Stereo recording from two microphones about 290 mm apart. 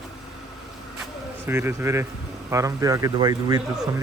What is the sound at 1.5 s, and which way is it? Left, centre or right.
Speech, centre.